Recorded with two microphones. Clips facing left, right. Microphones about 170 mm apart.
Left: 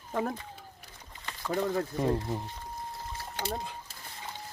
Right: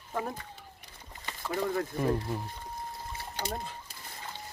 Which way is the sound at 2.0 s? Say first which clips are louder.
Even; 25° left (ahead or behind).